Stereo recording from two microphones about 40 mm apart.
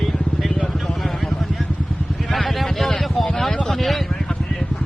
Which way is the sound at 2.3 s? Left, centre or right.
Centre.